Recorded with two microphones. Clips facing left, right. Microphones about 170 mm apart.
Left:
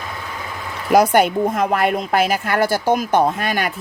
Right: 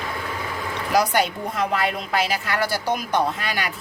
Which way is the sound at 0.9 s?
50° left (ahead or behind).